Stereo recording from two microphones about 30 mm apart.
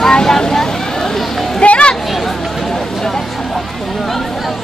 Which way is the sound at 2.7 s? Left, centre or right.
Centre.